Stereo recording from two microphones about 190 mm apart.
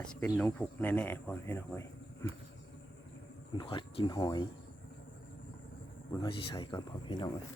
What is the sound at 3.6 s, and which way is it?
Speech, 25° left (ahead or behind).